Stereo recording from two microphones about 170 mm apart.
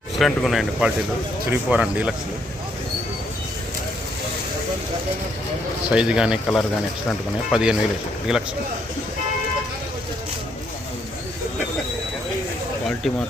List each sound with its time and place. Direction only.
0.2 s speech: centre (ahead or behind)
5.9 s speech: 5° right (ahead or behind)
12.8 s a sound: centre (ahead or behind)